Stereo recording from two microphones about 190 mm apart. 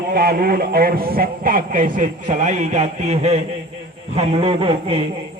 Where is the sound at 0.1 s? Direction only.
55° right (ahead or behind); by 5.0 s 30° right (ahead or behind).